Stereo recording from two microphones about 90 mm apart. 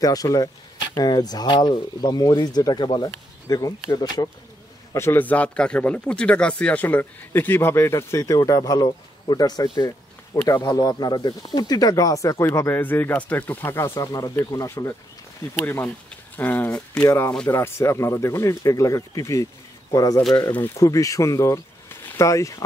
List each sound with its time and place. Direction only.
0.0 s speech: 40° left (ahead or behind)
4.9 s speech: 25° left (ahead or behind)
15.5 s speech: 25° left (ahead or behind)
17.0 s speech: 35° left (ahead or behind)